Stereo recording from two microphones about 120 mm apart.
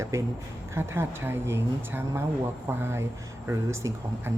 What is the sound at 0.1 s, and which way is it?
A woman's voice, 25° right (ahead or behind).